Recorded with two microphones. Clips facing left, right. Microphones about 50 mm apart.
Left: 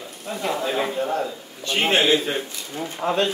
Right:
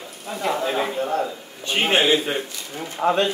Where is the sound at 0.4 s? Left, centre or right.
Centre; by 3.2 s right.